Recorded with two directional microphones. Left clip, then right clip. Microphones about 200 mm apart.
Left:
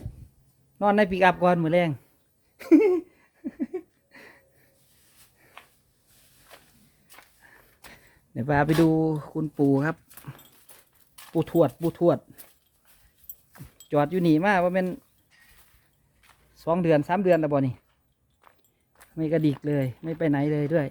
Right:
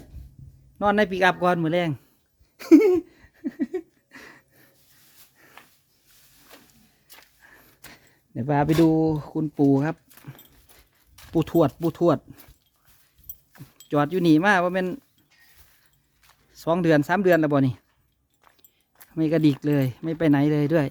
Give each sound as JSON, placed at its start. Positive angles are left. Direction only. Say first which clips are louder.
{"t": 0.8, "sound": "a man's voice", "louder": "even", "side_deg": -5}
{"t": 2.6, "sound": "a sound", "louder": "right 3 dB", "side_deg": -20}
{"t": 7.4, "sound": "speech", "louder": "right 2 dB", "side_deg": -15}
{"t": 10.2, "sound": "dog", "louder": "left 1 dB", "side_deg": -5}
{"t": 11.3, "sound": "speech", "louder": "right 1 dB", "side_deg": -25}
{"t": 13.7, "sound": "speech", "louder": "right 1 dB", "side_deg": -15}
{"t": 16.5, "sound": "speech", "louder": "right 2 dB", "side_deg": -30}
{"t": 18.4, "sound": "walk", "louder": "left 1 dB", "side_deg": -15}
{"t": 19.1, "sound": "speech", "louder": "right 4 dB", "side_deg": -25}